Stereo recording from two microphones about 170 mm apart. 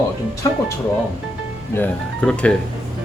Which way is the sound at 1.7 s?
10° left (ahead or behind).